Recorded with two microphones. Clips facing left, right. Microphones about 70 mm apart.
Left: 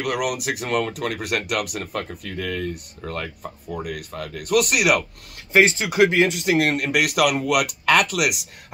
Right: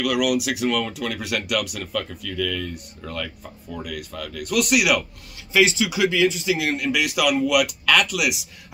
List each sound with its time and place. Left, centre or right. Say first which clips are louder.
0.0 s speech: right 3 dB; left